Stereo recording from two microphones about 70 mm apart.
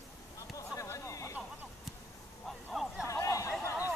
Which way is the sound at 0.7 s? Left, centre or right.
Left.